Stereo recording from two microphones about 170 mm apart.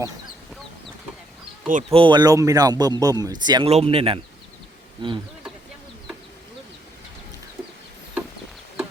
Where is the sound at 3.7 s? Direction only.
35° right (ahead or behind).